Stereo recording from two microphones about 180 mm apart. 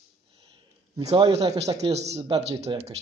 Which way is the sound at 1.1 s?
25° right (ahead or behind).